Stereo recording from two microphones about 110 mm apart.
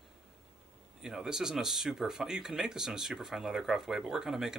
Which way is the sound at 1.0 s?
5° right (ahead or behind).